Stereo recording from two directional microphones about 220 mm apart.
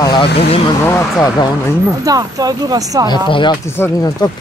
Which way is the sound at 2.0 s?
15° right (ahead or behind).